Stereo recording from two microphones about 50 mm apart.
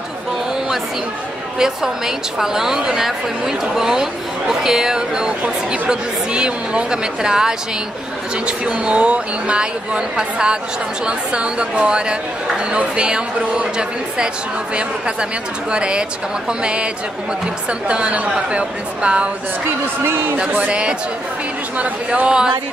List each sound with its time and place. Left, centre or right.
1.6 s a woman's voice: centre
20.0 s a man's voice: right
20.3 s speech: right